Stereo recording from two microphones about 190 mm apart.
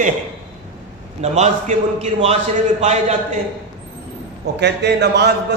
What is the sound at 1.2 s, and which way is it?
A man's voice, 35° right (ahead or behind).